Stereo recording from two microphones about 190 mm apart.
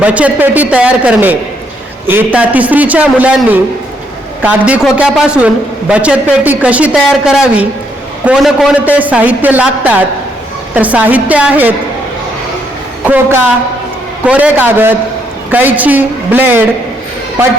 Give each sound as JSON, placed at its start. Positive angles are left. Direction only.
{"t": 0.0, "sound": "a woman's voice", "side_deg": -5}
{"t": 13.1, "sound": "a woman's voice", "side_deg": -10}